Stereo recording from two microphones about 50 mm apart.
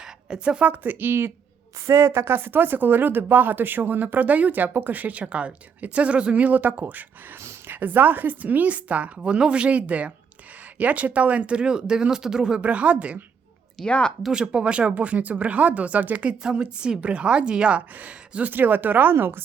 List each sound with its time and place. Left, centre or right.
0.0 s a sound: centre
0.6 s speech: right
1.9 s a woman's voice: right; by 12.6 s centre
12.6 s a woman's voice: right
13.8 s a woman's voice: left
14.3 s a woman's voice: centre
16.4 s a woman's voice: centre; by 19.4 s right